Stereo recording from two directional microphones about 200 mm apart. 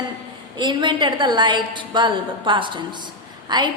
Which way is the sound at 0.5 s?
25° right (ahead or behind).